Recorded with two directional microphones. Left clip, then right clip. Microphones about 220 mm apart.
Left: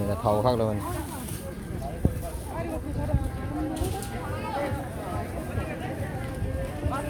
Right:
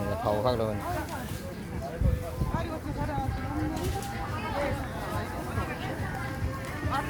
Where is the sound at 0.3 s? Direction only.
25° left (ahead or behind).